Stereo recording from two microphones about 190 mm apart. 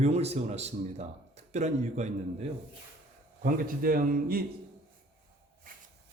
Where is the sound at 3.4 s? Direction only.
50° right (ahead or behind).